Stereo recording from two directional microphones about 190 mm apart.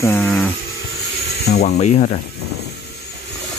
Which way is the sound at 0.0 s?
10° left (ahead or behind).